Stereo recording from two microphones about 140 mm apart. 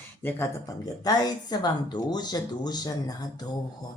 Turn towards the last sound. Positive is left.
turn(degrees=30)  # may be behind; listen again after turning